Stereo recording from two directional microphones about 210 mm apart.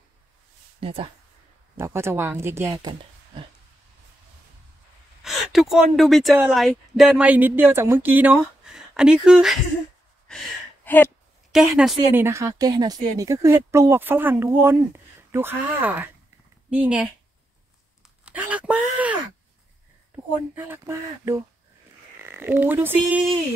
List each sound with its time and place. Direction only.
0.7 s speech: 25° right (ahead or behind)
1.8 s a woman's voice: 10° right (ahead or behind)
5.2 s a woman's voice: centre (ahead or behind)
10.2 s a sound: 5° left (ahead or behind)
11.5 s a woman's voice: 5° right (ahead or behind)
18.2 s speech: 5° right (ahead or behind)
20.5 s a woman's voice: 10° right (ahead or behind)